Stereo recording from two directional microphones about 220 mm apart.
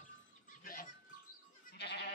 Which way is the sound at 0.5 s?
40° left (ahead or behind).